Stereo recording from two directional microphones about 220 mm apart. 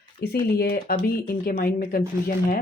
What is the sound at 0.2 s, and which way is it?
Speech, 45° left (ahead or behind).